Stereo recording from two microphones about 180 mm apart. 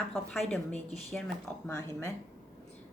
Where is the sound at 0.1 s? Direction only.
Centre (ahead or behind).